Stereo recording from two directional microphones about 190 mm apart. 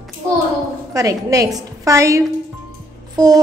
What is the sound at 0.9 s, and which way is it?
A woman's voice, 20° right (ahead or behind).